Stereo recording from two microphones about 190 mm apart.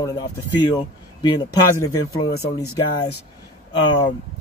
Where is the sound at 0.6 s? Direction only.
25° left (ahead or behind).